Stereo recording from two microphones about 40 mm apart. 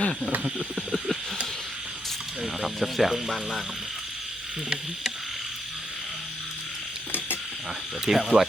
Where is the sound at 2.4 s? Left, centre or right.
Centre.